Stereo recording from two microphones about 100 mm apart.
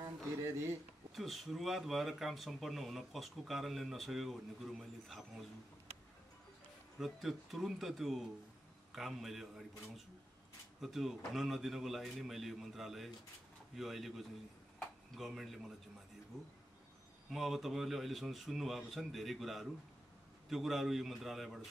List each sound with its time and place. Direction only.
0.5 s speech: 25° right (ahead or behind)
1.1 s speech: centre (ahead or behind)
7.0 s speech: centre (ahead or behind)
10.8 s speech: centre (ahead or behind)
17.3 s speech: centre (ahead or behind)